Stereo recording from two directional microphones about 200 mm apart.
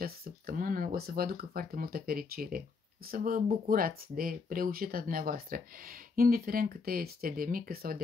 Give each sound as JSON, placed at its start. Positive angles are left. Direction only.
{"t": 0.0, "sound": "speech", "side_deg": -50}